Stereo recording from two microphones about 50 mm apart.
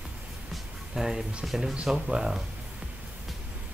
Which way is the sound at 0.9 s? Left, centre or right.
Centre.